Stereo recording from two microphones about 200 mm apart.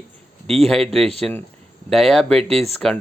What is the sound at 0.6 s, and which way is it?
A man's voice, centre (ahead or behind).